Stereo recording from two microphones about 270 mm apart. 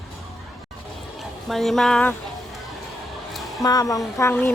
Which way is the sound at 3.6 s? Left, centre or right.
Centre.